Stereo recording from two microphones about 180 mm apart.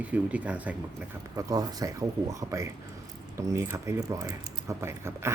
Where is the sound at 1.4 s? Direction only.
20° right (ahead or behind).